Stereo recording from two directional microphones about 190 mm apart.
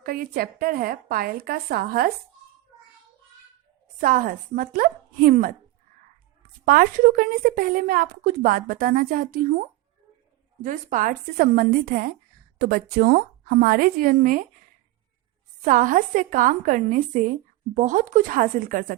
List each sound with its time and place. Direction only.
0.0 s a woman's voice: 50° right (ahead or behind)
4.0 s a woman's voice: 45° right (ahead or behind)
6.7 s a woman's voice: 50° right (ahead or behind)
15.6 s a woman's voice: 45° right (ahead or behind)